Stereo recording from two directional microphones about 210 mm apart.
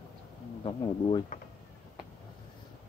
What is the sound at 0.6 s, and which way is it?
Speech, 25° left (ahead or behind).